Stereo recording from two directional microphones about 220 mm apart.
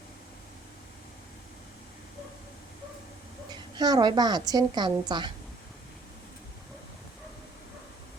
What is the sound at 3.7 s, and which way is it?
A woman's voice, 20° right (ahead or behind).